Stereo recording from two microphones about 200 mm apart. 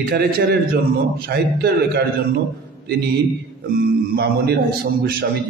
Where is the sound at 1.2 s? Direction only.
50° right (ahead or behind).